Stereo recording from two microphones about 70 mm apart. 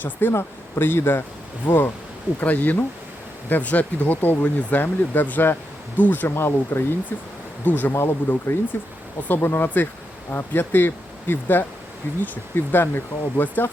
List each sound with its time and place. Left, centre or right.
0.0 s speech: left
7.6 s speech: left